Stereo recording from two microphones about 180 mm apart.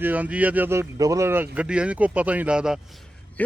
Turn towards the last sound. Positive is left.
turn(degrees=10)  # may be behind; listen again after turning